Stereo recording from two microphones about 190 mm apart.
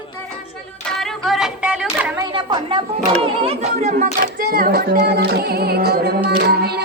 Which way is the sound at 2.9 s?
30° right (ahead or behind).